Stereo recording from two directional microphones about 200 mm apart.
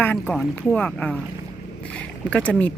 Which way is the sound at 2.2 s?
5° left (ahead or behind).